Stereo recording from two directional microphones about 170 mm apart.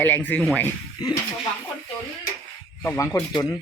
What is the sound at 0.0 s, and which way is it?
Speech, 10° left (ahead or behind).